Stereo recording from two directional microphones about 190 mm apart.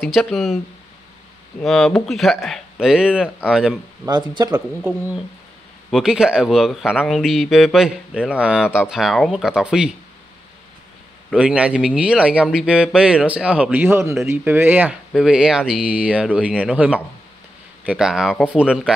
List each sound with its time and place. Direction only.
0.0 s speech: centre (ahead or behind)
1.6 s speech: centre (ahead or behind)
4.0 s speech: 20° right (ahead or behind)
4.6 s speech: 10° right (ahead or behind)
11.2 s speech: 5° right (ahead or behind)